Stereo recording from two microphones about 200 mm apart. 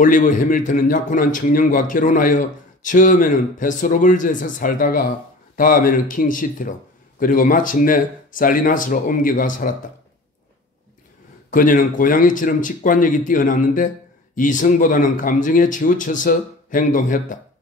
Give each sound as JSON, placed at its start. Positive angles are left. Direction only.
{"t": 0.0, "sound": "a man's voice", "side_deg": 40}
{"t": 11.5, "sound": "a man's voice", "side_deg": 40}